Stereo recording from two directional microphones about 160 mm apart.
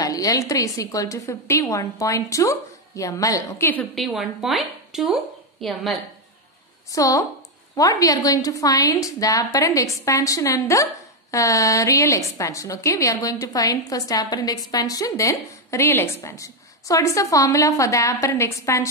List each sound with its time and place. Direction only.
0.0 s a woman's voice: 20° left (ahead or behind)
3.9 s speech: centre (ahead or behind)
7.0 s a woman's voice: 20° left (ahead or behind)